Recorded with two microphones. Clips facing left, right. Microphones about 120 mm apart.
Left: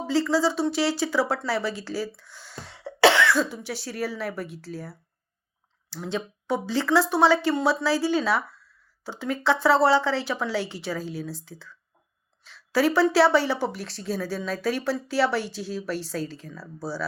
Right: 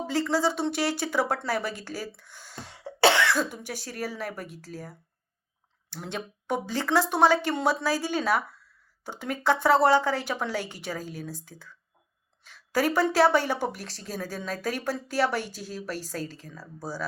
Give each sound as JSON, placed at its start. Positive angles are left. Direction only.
{"t": 0.1, "sound": "speech", "side_deg": -50}